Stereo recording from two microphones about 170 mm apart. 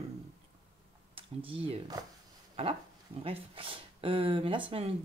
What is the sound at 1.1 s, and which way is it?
Speech, 30° right (ahead or behind).